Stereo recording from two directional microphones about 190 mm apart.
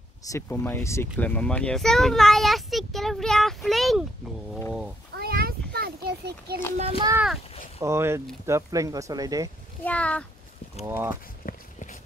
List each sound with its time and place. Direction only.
0.2 s a child's voice: 15° left (ahead or behind)
5.1 s a sound: 55° right (ahead or behind)
6.8 s speech: 30° right (ahead or behind)
7.8 s speech: 15° right (ahead or behind)
9.8 s speech: 5° left (ahead or behind)
10.9 s speech: 10° right (ahead or behind)
11.4 s clip-clop: 40° left (ahead or behind)